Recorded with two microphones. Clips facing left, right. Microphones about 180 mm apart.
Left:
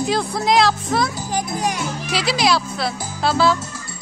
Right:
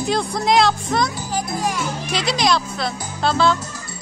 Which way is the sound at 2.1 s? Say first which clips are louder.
Left 1 dB; 5° left (ahead or behind).